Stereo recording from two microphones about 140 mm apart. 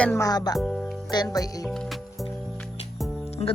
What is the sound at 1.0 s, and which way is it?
Speech, 30° left (ahead or behind).